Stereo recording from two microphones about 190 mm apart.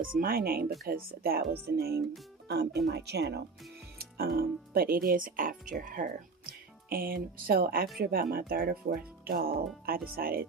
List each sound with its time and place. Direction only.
0.0 s speech: 50° right (ahead or behind)